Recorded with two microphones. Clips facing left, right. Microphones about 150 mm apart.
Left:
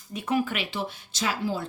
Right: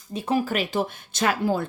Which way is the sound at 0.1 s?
30° right (ahead or behind).